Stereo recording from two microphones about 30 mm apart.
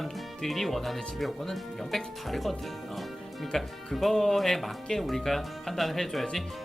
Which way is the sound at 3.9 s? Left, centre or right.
Centre.